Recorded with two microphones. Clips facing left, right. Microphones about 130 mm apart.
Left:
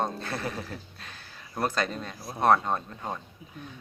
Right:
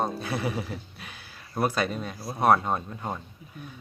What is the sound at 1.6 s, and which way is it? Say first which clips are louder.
Speech: right 2 dB; 5° right (ahead or behind).